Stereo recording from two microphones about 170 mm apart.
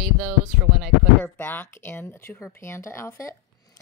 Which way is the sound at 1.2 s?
10° left (ahead or behind).